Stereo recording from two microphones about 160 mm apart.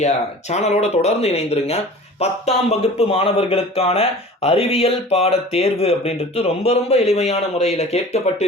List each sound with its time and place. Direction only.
0.5 s speech: 45° left (ahead or behind)